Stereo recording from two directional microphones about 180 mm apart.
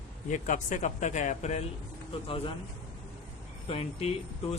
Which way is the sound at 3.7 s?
30° left (ahead or behind).